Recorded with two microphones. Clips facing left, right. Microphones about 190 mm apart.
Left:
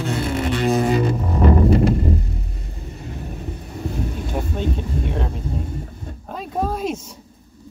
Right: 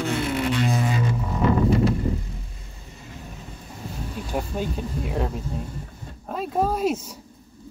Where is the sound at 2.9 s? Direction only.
55° left (ahead or behind).